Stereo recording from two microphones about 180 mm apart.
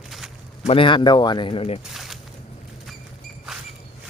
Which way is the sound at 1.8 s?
Centre (ahead or behind).